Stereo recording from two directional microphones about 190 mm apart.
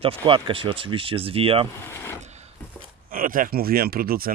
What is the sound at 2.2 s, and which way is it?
Wood, 35° right (ahead or behind).